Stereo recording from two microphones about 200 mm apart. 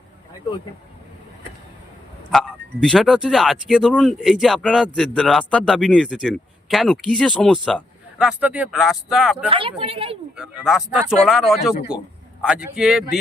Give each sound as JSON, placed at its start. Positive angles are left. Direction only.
{"t": 2.3, "sound": "speech", "side_deg": 5}
{"t": 9.5, "sound": "speech", "side_deg": -25}
{"t": 10.3, "sound": "speech", "side_deg": -5}